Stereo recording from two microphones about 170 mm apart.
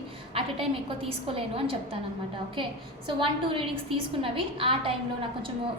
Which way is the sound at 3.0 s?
30° right (ahead or behind).